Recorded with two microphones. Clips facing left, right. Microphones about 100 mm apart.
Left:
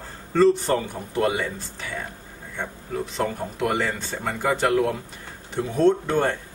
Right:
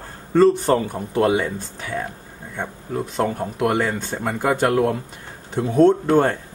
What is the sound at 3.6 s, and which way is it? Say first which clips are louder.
Speech: right 4 dB; 50° right (ahead or behind).